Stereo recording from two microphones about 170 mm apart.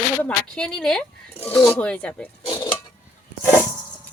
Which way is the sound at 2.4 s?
25° left (ahead or behind).